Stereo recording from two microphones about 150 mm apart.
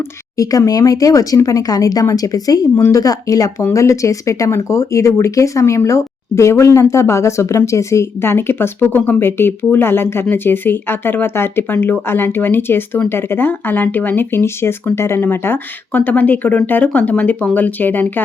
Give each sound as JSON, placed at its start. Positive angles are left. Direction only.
{"t": 0.3, "sound": "speech", "side_deg": 25}